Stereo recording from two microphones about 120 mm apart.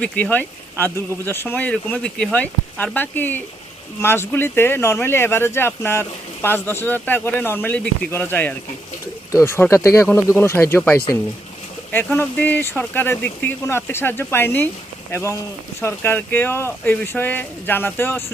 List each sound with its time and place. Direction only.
0.0 s speech: 15° left (ahead or behind)
12.1 s speech: 20° left (ahead or behind)